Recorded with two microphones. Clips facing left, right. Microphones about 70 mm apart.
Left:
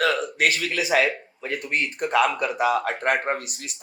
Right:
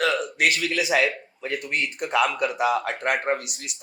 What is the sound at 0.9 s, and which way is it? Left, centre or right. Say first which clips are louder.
Speech: left 4 dB; left.